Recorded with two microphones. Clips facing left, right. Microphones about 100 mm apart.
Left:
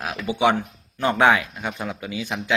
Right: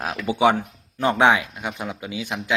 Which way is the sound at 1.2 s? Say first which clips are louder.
Even; 15° right (ahead or behind).